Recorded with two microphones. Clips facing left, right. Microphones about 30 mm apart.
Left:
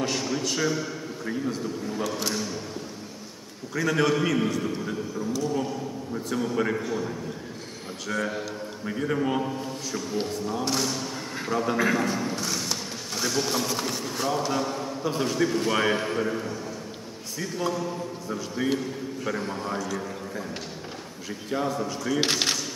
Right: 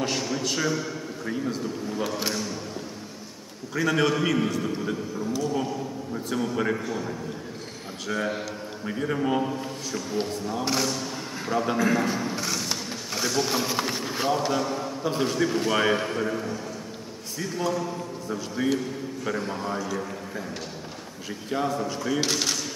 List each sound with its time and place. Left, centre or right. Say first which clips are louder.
0.0 s a man's voice: even; centre
3.7 s a man's voice: even; centre
4.7 s a man's voice: right 1 dB; centre
8.1 s a man's voice: right 1 dB; centre
11.9 s a sound: right 1 dB; centre
13.5 s speech: right 1 dB; centre
14.3 s a man's voice: right 2 dB; centre
22.2 s speech: left 4 dB; left